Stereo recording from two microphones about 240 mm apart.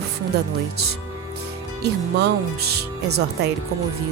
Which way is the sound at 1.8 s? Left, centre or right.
Right.